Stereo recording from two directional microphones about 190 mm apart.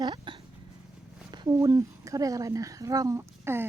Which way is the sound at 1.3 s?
20° right (ahead or behind).